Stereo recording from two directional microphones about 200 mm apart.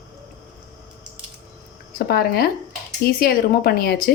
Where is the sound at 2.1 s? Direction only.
50° left (ahead or behind).